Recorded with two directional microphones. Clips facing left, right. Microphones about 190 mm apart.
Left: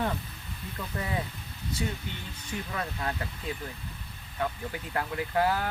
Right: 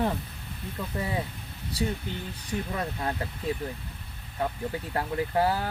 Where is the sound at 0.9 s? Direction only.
25° right (ahead or behind).